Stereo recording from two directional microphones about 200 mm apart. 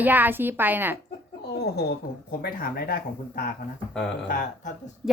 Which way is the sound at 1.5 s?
55° left (ahead or behind).